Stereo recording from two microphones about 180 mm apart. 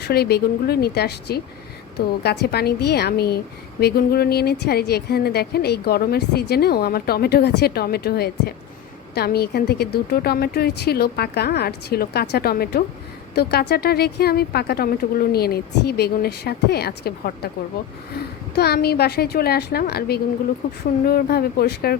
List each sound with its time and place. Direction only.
0.0 s a woman's voice: 60° left (ahead or behind)